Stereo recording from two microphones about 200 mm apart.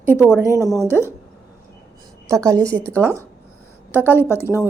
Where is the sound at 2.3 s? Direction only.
15° right (ahead or behind).